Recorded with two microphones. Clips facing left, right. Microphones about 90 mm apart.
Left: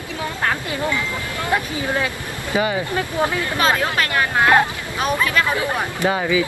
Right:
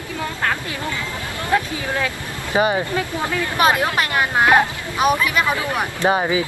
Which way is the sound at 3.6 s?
20° right (ahead or behind).